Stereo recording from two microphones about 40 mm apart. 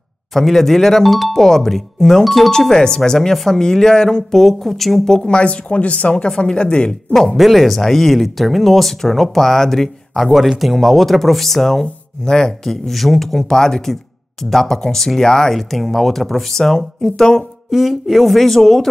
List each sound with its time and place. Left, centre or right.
0.3 s speech: centre
2.7 s speech: centre
5.3 s speech: left
6.2 s speech: centre
7.2 s speech: centre
11.8 s speech: centre
17.4 s speech: centre